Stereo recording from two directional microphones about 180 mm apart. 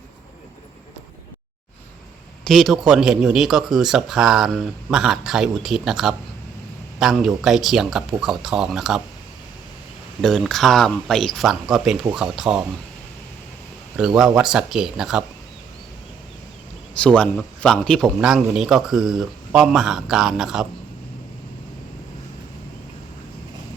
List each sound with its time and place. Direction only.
2.4 s a man's voice: centre (ahead or behind)
10.2 s a man's voice: centre (ahead or behind)
13.9 s a man's voice: 5° right (ahead or behind)
17.0 s a man's voice: 5° left (ahead or behind)